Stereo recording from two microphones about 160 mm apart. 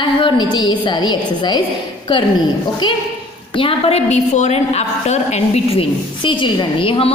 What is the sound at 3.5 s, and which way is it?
A woman's voice, 35° left (ahead or behind).